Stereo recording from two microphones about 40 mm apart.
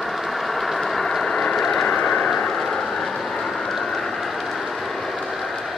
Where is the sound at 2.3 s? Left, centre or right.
Centre.